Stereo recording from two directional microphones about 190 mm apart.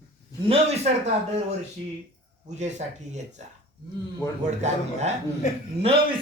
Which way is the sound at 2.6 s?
40° right (ahead or behind).